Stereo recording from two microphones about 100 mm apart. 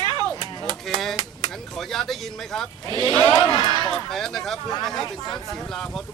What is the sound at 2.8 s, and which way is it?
Speech, 50° right (ahead or behind).